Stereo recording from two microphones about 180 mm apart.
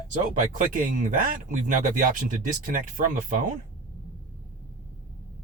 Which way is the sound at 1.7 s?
45° right (ahead or behind).